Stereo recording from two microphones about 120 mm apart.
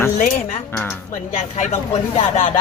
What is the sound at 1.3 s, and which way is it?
A man's voice, 75° left (ahead or behind).